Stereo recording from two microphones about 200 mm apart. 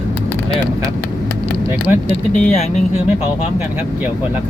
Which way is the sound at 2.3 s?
40° left (ahead or behind).